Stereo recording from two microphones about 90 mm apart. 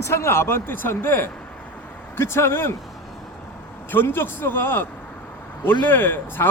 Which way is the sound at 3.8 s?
25° left (ahead or behind).